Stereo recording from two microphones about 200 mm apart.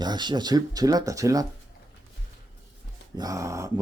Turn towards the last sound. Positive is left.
turn(degrees=-15)  # may be behind; listen again after turning